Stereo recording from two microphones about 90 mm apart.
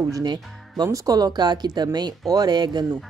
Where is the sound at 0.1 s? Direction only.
50° right (ahead or behind).